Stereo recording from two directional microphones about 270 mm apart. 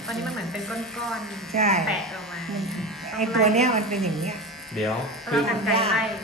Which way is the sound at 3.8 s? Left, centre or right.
Centre.